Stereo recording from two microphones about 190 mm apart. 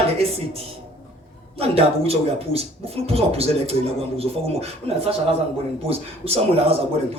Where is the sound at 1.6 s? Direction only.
30° right (ahead or behind).